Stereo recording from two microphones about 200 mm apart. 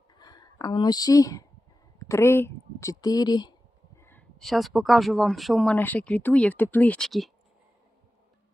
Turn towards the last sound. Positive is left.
turn(degrees=0)  # may be behind; listen again after turning